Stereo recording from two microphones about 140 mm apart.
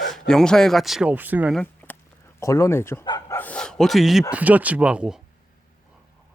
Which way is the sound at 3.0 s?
30° left (ahead or behind).